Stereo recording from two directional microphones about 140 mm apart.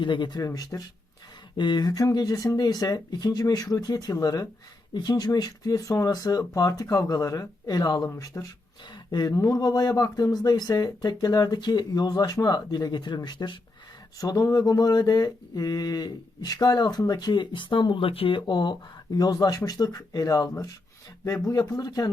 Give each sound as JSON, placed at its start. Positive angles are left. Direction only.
{"t": 0.0, "sound": "mantra", "side_deg": 35}